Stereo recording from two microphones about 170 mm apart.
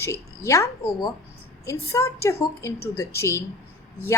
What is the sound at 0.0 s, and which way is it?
A woman's voice, 20° left (ahead or behind).